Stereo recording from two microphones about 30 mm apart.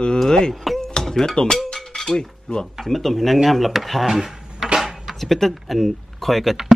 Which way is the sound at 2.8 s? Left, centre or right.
Centre.